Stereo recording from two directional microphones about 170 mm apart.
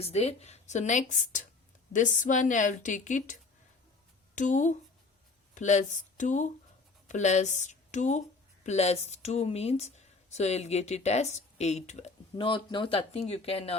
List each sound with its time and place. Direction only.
0.0 s speech: 40° left (ahead or behind)
4.4 s speech: 45° left (ahead or behind)
12.4 s speech: 30° left (ahead or behind)